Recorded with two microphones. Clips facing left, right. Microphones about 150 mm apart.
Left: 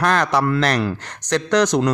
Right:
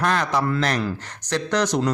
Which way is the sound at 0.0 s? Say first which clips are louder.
Left 4 dB; 80° left.